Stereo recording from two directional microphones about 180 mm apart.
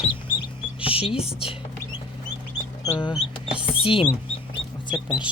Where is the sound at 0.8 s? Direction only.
30° left (ahead or behind).